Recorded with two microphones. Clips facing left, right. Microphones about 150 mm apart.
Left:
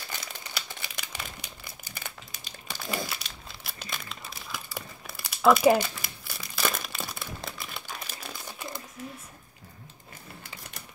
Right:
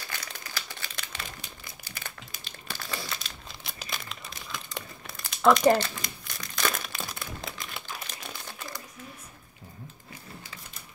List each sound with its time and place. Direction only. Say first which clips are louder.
0.1 s crumpling: left 1 dB; 15° left (ahead or behind)
3.1 s crumpling: right 1 dB; centre (ahead or behind)
8.5 s crumpling: left 2 dB; 25° left (ahead or behind)